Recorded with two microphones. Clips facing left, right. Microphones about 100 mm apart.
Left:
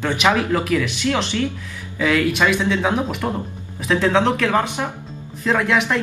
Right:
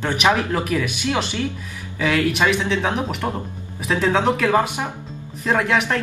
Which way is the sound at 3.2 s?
Centre (ahead or behind).